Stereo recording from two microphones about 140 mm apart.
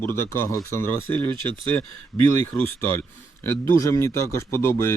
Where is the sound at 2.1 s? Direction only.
Centre (ahead or behind).